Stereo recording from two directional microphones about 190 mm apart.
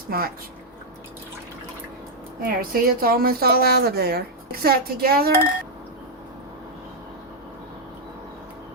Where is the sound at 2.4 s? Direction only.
50° right (ahead or behind).